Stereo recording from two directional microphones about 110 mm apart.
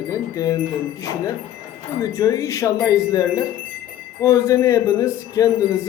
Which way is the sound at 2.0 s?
30° left (ahead or behind).